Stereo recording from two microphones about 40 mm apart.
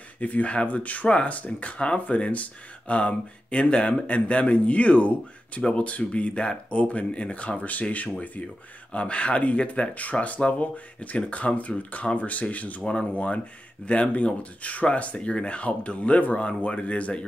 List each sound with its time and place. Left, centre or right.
0.2 s speech: left
8.9 s speech: left
15.1 s speech: left